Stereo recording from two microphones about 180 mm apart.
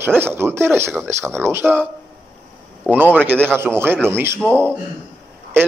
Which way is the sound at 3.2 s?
10° right (ahead or behind).